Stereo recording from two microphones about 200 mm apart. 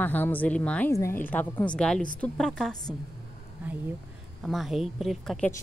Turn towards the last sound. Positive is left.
turn(degrees=0)  # may be behind; listen again after turning